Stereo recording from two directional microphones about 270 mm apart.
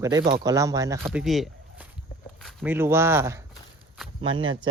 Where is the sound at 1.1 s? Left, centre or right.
Centre.